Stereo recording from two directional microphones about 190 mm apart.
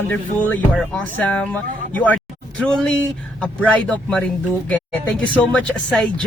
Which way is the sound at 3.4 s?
5° left (ahead or behind).